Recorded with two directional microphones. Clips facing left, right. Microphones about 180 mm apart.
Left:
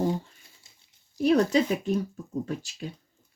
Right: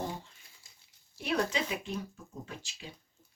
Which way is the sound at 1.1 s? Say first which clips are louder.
Left 10 dB; 40° left (ahead or behind).